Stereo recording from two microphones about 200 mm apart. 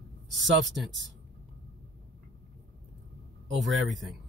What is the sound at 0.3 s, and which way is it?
Speech, 65° right (ahead or behind).